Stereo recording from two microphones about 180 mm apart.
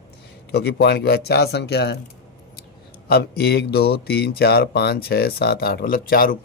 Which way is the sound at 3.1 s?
60° left (ahead or behind).